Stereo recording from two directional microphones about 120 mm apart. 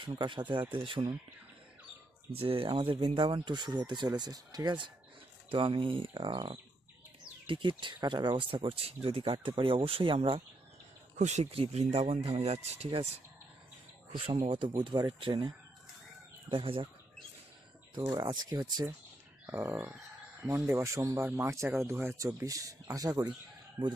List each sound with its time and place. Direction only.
0.0 s speech: 40° right (ahead or behind)
2.3 s speech: 50° right (ahead or behind)
11.2 s speech: 75° right (ahead or behind)
11.5 s speech: 55° right (ahead or behind)
14.4 s speech: 45° right (ahead or behind)
18.1 s speech: 30° right (ahead or behind)
19.5 s speech: 20° right (ahead or behind)